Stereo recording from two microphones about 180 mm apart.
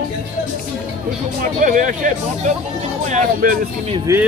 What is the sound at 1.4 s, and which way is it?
Speech, 45° right (ahead or behind).